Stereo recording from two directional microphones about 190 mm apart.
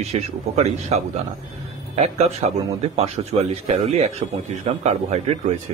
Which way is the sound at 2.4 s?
40° right (ahead or behind).